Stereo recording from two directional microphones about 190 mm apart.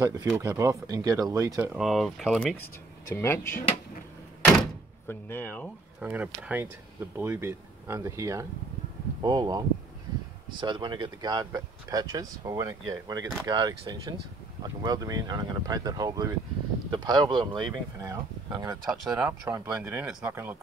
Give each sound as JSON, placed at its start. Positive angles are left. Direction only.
{"t": 0.0, "sound": "speech", "side_deg": -20}
{"t": 3.1, "sound": "speech", "side_deg": 15}
{"t": 4.4, "sound": "door", "side_deg": 10}
{"t": 5.9, "sound": "speech", "side_deg": -5}
{"t": 18.8, "sound": "speech", "side_deg": -5}